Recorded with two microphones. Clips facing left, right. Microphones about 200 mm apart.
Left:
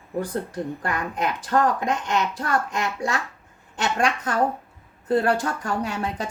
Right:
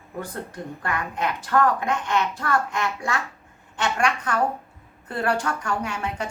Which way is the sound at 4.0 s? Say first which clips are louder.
Left 2 dB; 35° left (ahead or behind).